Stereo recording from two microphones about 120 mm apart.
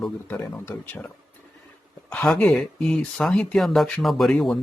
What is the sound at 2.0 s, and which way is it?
Speech, 10° left (ahead or behind).